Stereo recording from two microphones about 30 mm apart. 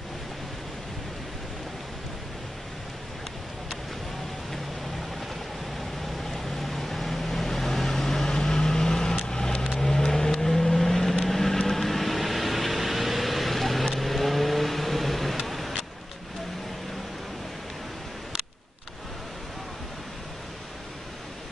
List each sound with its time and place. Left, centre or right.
6.2 s vehicle: centre